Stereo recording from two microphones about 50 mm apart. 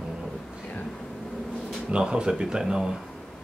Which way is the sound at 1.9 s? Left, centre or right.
Centre.